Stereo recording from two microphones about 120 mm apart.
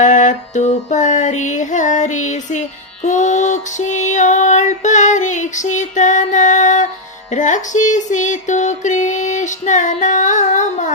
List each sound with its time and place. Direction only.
0.0 s female singing: 90° left